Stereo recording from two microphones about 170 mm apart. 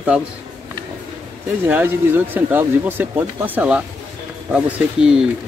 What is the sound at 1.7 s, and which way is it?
Speech, 10° right (ahead or behind).